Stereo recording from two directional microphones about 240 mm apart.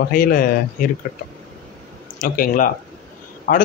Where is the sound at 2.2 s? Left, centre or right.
Left.